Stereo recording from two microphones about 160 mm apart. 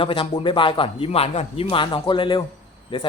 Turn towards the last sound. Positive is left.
turn(degrees=30)  # may be behind; listen again after turning